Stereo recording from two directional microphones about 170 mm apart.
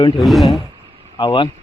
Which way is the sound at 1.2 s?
25° left (ahead or behind).